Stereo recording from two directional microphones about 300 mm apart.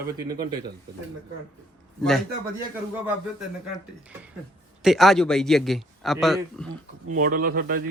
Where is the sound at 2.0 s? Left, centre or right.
Centre.